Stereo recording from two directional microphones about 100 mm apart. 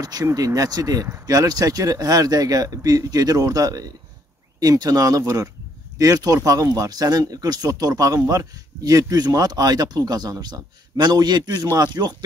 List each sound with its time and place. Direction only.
0.0 s speech: 40° right (ahead or behind)